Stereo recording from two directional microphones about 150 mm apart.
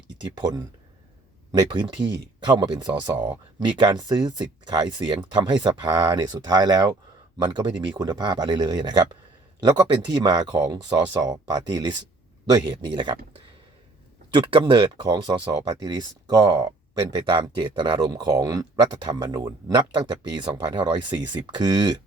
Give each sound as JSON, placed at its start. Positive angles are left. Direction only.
{"t": 0.3, "sound": "speech", "side_deg": -30}
{"t": 2.4, "sound": "speech", "side_deg": -30}
{"t": 14.3, "sound": "speech", "side_deg": -35}